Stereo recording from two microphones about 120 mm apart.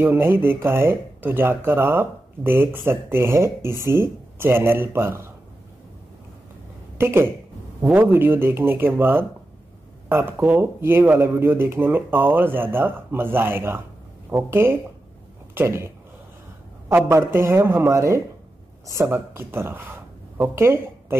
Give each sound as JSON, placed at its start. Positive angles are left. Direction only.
{"t": 0.0, "sound": "speech", "side_deg": -15}
{"t": 7.0, "sound": "speech", "side_deg": -20}
{"t": 16.9, "sound": "speech", "side_deg": -20}